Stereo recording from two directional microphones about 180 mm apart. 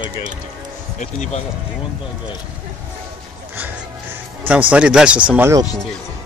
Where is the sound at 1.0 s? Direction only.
40° left (ahead or behind).